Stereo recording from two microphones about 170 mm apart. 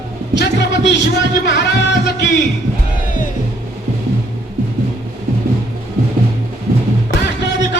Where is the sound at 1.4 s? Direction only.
90° left.